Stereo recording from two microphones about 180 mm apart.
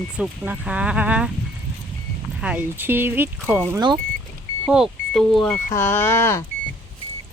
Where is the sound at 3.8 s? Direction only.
25° right (ahead or behind).